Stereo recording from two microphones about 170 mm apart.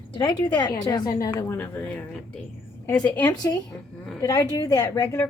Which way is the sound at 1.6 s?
10° left (ahead or behind).